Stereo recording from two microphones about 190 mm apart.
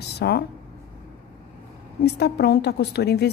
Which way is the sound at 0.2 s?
55° left (ahead or behind).